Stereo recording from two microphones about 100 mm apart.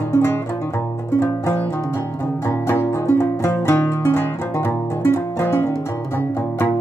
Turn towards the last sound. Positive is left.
turn(degrees=25)  # may be behind; listen again after turning